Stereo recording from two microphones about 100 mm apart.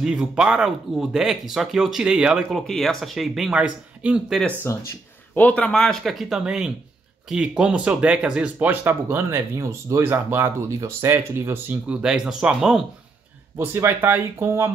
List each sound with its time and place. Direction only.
0.0 s speech: 5° right (ahead or behind)
2.6 s speech: 5° left (ahead or behind)
4.7 s speech: 30° left (ahead or behind)
5.3 s speech: 15° left (ahead or behind); by 12.0 s 20° right (ahead or behind)
12.0 s speech: 5° right (ahead or behind)
13.6 s speech: 25° right (ahead or behind)